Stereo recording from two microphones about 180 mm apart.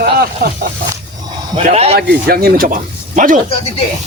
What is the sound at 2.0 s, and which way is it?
Speech, 60° right (ahead or behind).